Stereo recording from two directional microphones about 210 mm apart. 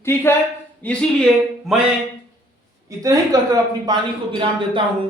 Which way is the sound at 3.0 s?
15° right (ahead or behind).